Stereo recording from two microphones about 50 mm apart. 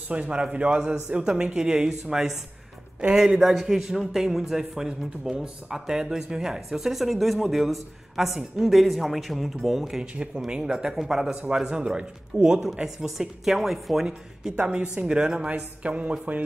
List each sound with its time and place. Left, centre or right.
0.1 s speech: right; by 10.0 s centre
10.1 s speech: centre
11.5 s speech: centre
14.6 s speech: centre